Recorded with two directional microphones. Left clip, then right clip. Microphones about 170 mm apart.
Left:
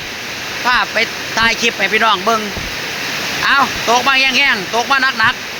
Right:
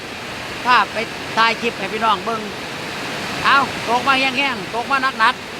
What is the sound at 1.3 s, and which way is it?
Speech, 10° left (ahead or behind).